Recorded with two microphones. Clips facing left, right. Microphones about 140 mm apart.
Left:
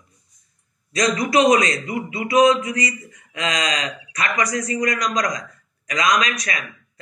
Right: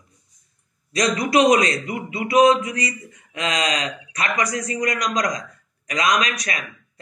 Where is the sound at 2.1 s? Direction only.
25° right (ahead or behind).